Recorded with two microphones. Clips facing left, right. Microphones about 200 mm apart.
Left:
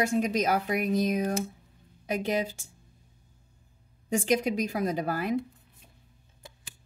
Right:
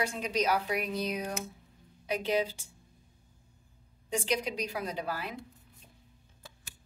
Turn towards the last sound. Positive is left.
turn(degrees=50)  # may be behind; listen again after turning